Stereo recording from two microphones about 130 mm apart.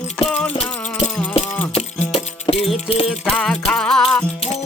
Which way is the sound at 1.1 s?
10° left (ahead or behind).